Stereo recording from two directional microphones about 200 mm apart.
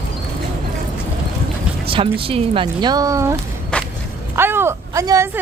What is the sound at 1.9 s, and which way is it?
Speech, 25° right (ahead or behind).